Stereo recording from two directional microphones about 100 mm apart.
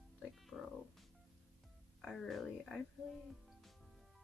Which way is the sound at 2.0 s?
5° left (ahead or behind).